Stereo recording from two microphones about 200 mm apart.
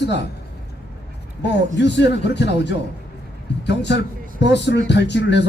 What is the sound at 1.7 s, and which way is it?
A man's voice, 60° left (ahead or behind).